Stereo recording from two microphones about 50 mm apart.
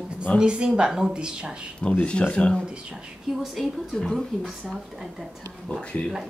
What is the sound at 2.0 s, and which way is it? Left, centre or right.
Speech, left.